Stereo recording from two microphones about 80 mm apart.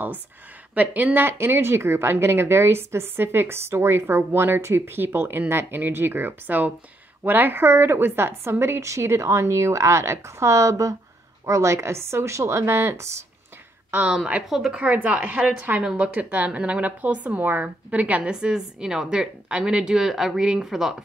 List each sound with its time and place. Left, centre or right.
0.7 s a woman's voice: right
13.8 s a woman's voice: centre
14.1 s a woman's voice: centre
14.8 s a woman's voice: centre